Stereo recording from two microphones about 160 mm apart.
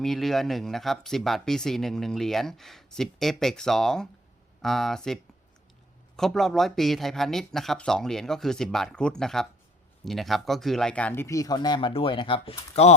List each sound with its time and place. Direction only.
0.0 s speech: centre (ahead or behind); by 12.5 s 30° left (ahead or behind)